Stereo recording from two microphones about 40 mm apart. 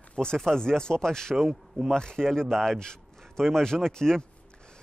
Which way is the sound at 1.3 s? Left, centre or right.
Centre.